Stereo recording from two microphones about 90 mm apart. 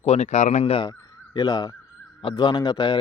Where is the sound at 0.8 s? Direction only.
50° left (ahead or behind).